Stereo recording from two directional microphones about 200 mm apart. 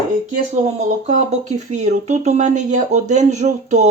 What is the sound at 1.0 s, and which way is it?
Speech, 35° right (ahead or behind).